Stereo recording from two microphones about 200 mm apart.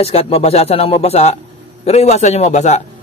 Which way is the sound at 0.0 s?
30° left (ahead or behind).